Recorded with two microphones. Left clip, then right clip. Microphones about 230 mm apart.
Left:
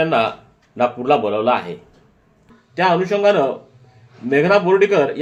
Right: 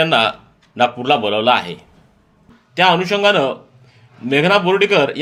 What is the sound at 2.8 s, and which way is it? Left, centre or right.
A man's voice, right.